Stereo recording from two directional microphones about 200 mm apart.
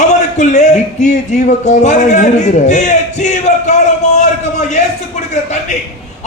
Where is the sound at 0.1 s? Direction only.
35° left (ahead or behind).